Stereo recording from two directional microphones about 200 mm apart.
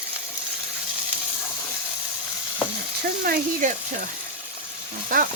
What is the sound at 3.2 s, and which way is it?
Speech, 50° right (ahead or behind).